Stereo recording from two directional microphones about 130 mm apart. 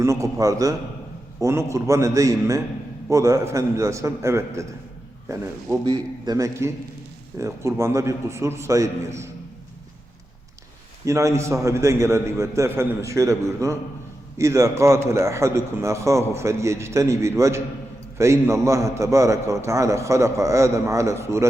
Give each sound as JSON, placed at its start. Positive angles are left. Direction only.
{"t": 0.0, "sound": "a man's voice", "side_deg": -25}
{"t": 11.0, "sound": "a man's voice", "side_deg": -25}